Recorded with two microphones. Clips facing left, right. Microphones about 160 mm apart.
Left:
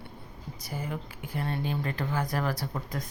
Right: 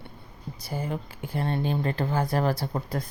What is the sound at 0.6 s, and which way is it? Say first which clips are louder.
Speech: right 4 dB; 30° right (ahead or behind).